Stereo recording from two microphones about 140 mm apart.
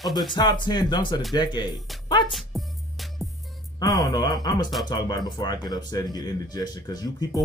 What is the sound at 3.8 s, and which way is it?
A man's voice, 25° left (ahead or behind).